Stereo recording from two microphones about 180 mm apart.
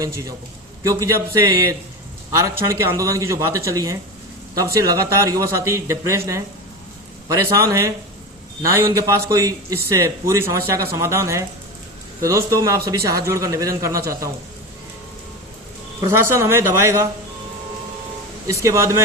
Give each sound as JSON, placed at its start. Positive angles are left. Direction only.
{"t": 0.8, "sound": "a man's voice", "side_deg": -15}
{"t": 16.0, "sound": "a man's voice", "side_deg": -15}
{"t": 18.4, "sound": "a man's voice", "side_deg": -15}